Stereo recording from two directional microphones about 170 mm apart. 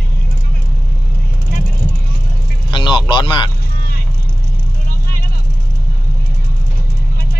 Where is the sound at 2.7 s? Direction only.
25° left (ahead or behind).